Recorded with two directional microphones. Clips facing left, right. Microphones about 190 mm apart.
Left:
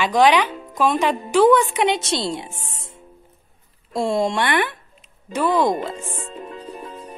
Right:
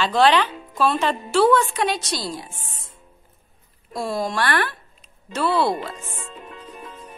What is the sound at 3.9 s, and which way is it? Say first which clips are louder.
A woman's voice: left 5 dB; 25° left (ahead or behind).